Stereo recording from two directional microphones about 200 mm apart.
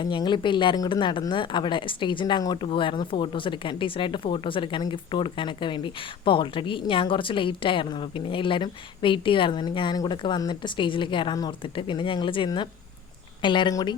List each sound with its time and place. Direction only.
0.0 s speech: 25° left (ahead or behind)